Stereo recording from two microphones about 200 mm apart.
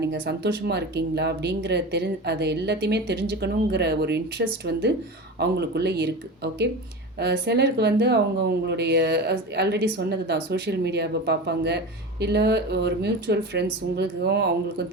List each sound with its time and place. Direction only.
0.0 s speech: 55° right (ahead or behind)